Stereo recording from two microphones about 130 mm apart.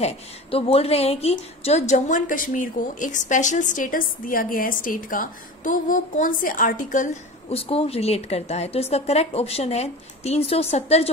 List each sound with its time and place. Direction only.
0.0 s a woman's voice: 50° left (ahead or behind); by 7.2 s 75° left (ahead or behind)
7.4 s a woman's voice: 50° left (ahead or behind)